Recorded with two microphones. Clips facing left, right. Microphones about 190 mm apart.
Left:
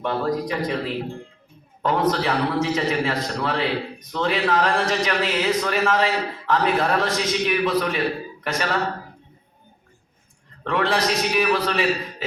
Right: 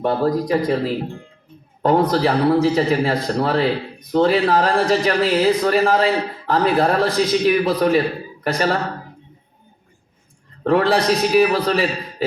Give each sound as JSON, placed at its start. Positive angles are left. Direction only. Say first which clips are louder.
{"t": 0.0, "sound": "speech", "louder": "right 5 dB", "side_deg": -40}
{"t": 10.6, "sound": "speech", "louder": "right 6 dB", "side_deg": -40}